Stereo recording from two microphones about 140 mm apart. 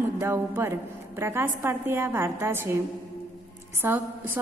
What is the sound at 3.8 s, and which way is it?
Speech, 15° right (ahead or behind).